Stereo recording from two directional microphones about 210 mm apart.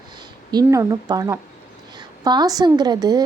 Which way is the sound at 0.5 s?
15° right (ahead or behind).